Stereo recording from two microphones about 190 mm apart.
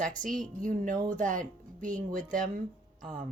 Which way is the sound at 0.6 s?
45° right (ahead or behind).